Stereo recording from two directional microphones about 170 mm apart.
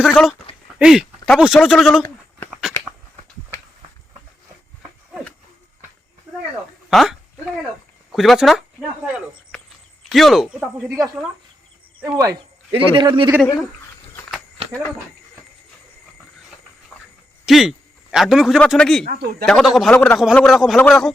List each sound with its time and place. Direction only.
0.0 s speech: centre (ahead or behind)
2.5 s a sound: 5° right (ahead or behind)
4.8 s a sound: 5° right (ahead or behind)
6.9 s speech: centre (ahead or behind)
10.0 s speech: centre (ahead or behind)
12.1 s speech: 20° right (ahead or behind)
14.6 s a sound: 35° right (ahead or behind)
17.4 s a man's voice: centre (ahead or behind)
19.1 s speech: 65° right (ahead or behind)
19.5 s a man's voice: centre (ahead or behind)